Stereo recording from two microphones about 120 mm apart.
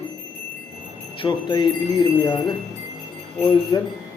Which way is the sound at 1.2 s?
15° left (ahead or behind).